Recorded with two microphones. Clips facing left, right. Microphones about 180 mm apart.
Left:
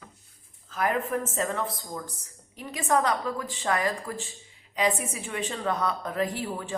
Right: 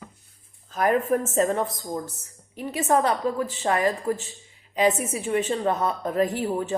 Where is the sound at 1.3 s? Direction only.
40° right (ahead or behind).